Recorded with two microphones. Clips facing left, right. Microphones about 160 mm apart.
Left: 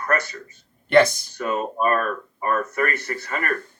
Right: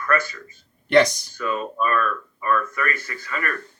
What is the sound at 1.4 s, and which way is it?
Speech, 45° left (ahead or behind).